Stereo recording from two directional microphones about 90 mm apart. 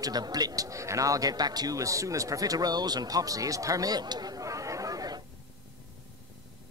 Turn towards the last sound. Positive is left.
turn(degrees=-45)  # may be behind; listen again after turning